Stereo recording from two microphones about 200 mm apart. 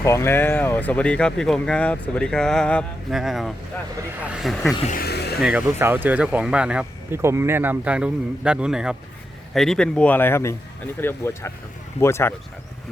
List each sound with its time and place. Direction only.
0.0 s speech: 15° left (ahead or behind)
4.8 s speech: 40° left (ahead or behind)
5.0 s vehicle: 55° left (ahead or behind)
5.4 s speech: 5° right (ahead or behind); by 12.3 s 15° left (ahead or behind)